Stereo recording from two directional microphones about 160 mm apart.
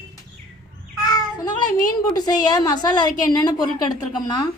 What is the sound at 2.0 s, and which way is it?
A woman's voice, 25° left (ahead or behind).